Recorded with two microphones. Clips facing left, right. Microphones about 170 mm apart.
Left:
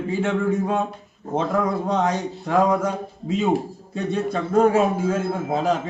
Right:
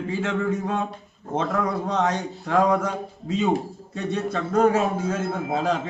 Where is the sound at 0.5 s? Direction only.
20° left (ahead or behind).